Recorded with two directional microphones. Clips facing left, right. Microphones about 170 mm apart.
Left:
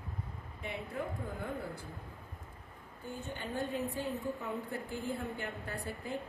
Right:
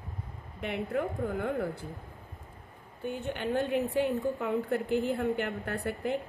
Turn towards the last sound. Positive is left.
turn(degrees=-65)  # may be behind; listen again after turning